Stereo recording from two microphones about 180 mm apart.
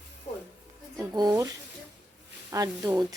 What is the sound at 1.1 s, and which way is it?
Speech, 20° right (ahead or behind).